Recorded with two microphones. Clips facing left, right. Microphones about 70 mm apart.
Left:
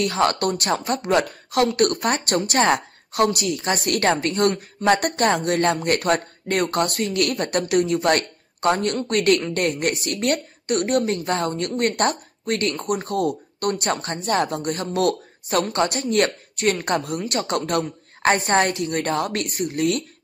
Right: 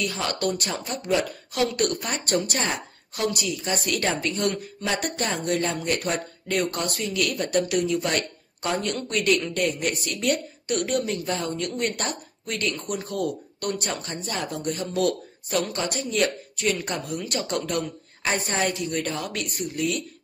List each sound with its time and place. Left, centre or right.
0.0 s speech: left